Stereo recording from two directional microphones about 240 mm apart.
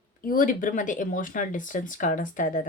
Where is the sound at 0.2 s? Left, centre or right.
Left.